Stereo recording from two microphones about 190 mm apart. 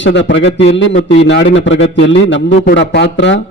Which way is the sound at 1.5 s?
75° left (ahead or behind).